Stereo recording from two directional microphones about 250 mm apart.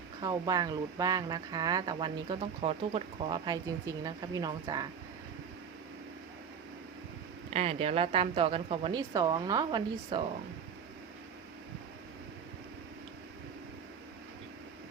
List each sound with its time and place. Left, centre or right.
0.2 s speech: centre
7.5 s speech: right